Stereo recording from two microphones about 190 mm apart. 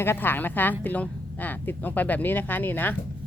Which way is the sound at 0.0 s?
10° left (ahead or behind).